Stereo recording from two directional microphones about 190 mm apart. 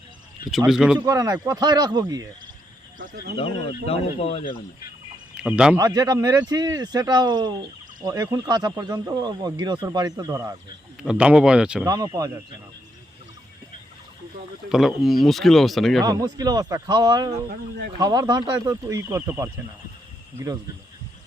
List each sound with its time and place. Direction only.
0.5 s speech: centre (ahead or behind)
0.9 s speech: 20° right (ahead or behind)
3.0 s speech: 45° right (ahead or behind)
3.3 s speech: 30° left (ahead or behind)
5.4 s speech: 5° right (ahead or behind)
5.7 s speech: 20° right (ahead or behind)
11.0 s speech: 5° right (ahead or behind)
11.9 s speech: 20° right (ahead or behind)
14.7 s speech: centre (ahead or behind)
16.0 s speech: 20° right (ahead or behind)